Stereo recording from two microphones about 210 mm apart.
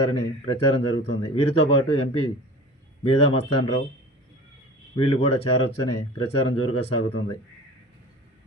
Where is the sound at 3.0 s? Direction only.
30° left (ahead or behind).